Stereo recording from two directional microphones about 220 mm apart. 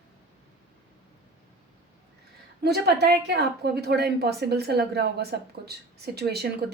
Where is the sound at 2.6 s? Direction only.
45° right (ahead or behind).